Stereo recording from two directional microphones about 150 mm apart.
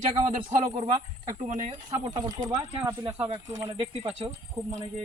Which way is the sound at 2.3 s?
25° right (ahead or behind).